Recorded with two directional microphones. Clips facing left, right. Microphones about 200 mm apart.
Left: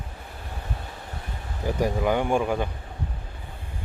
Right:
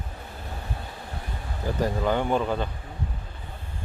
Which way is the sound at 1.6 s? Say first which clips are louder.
Left 1 dB; 10° left (ahead or behind).